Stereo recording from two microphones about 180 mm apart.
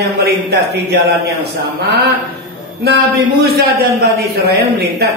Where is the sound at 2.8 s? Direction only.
60° right (ahead or behind).